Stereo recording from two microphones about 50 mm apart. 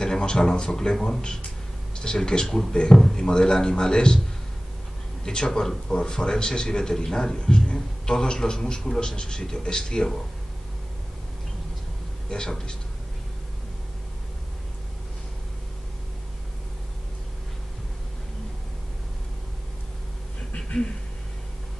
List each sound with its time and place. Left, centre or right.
0.0 s a man's voice: centre
5.2 s a man's voice: centre
12.3 s a man's voice: centre